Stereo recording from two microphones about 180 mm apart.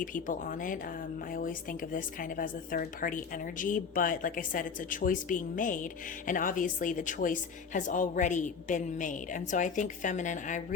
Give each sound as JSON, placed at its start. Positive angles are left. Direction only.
{"t": 0.0, "sound": "speech", "side_deg": 50}